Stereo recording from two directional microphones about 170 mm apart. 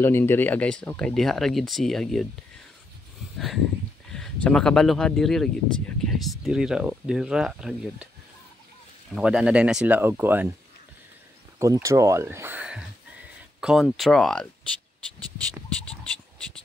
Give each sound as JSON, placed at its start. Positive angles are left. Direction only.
{"t": 0.0, "sound": "speech", "side_deg": 15}
{"t": 3.3, "sound": "a sound", "side_deg": 0}
{"t": 4.1, "sound": "speech", "side_deg": 5}
{"t": 9.1, "sound": "speech", "side_deg": -5}
{"t": 11.6, "sound": "speech", "side_deg": -20}